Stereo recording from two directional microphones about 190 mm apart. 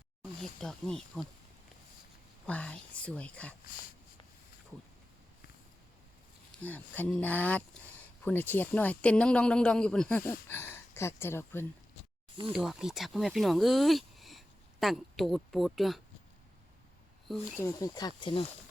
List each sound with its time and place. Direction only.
0.2 s speech: 5° left (ahead or behind)
2.5 s speech: 5° left (ahead or behind)
6.6 s speech: 10° left (ahead or behind)
12.5 s speech: centre (ahead or behind)
17.6 s speech: 20° left (ahead or behind)